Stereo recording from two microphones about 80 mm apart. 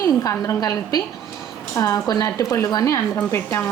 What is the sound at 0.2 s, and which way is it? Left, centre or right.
A woman's voice, left.